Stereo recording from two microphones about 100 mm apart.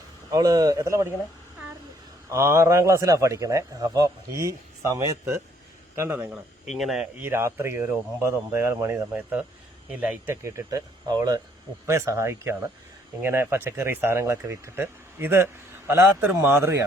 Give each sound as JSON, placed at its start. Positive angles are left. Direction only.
{"t": 0.3, "sound": "a man's voice", "side_deg": -40}
{"t": 2.3, "sound": "a man's voice", "side_deg": -30}
{"t": 6.0, "sound": "speech", "side_deg": -20}
{"t": 6.3, "sound": "speech", "side_deg": 0}
{"t": 7.2, "sound": "speech", "side_deg": -25}
{"t": 9.1, "sound": "speech", "side_deg": -15}
{"t": 10.4, "sound": "a man's voice", "side_deg": -25}
{"t": 11.9, "sound": "speech", "side_deg": -30}